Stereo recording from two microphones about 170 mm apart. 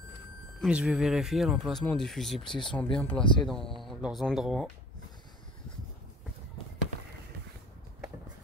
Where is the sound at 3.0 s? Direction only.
10° left (ahead or behind).